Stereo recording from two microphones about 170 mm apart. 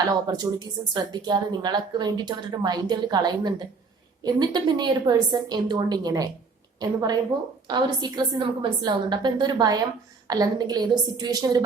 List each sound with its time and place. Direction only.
0.3 s a woman's voice: 25° right (ahead or behind)